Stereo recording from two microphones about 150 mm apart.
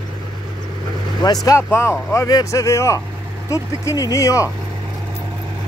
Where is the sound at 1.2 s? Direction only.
25° left (ahead or behind).